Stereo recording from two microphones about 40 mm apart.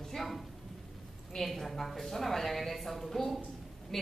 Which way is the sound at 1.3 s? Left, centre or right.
Centre.